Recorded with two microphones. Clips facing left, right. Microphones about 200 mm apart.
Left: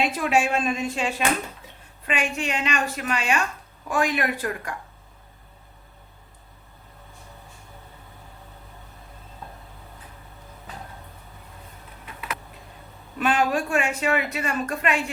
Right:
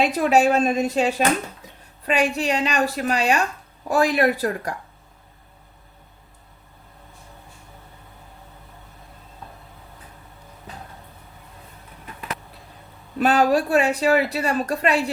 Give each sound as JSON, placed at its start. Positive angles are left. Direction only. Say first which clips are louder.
{"t": 0.0, "sound": "speech", "louder": "right 5 dB", "side_deg": -40}
{"t": 13.1, "sound": "speech", "louder": "right 5 dB", "side_deg": -40}